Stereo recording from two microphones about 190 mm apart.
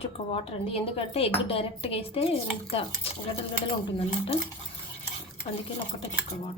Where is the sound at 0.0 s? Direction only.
30° left (ahead or behind).